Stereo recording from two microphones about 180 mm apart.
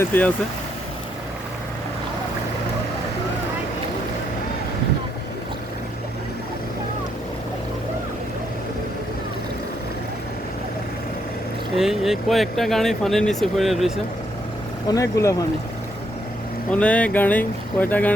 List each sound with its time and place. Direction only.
0.0 s speech: 10° left (ahead or behind)
11.8 s speech: centre (ahead or behind)
14.8 s speech: 20° left (ahead or behind)
16.7 s speech: 5° left (ahead or behind)